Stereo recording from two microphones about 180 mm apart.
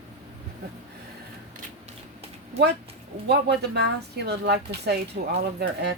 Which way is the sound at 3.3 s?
70° right (ahead or behind).